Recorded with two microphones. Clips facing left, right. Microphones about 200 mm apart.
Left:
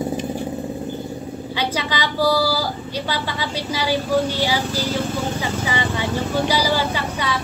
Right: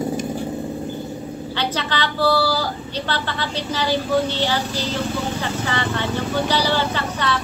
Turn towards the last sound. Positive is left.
turn(degrees=10)  # may be behind; listen again after turning